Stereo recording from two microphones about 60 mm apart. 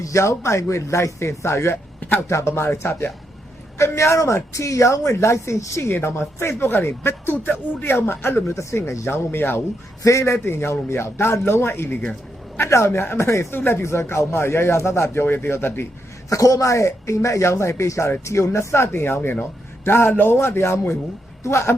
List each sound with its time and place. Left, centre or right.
0.0 s speech: left
2.0 s a sound: left
2.2 s speech: left
5.9 s a man's voice: left
8.5 s speech: left
9.0 s a man's voice: left
10.0 s speech: left
13.5 s a man's voice: left
13.8 s speech: left
16.3 s speech: left
18.9 s a man's voice: left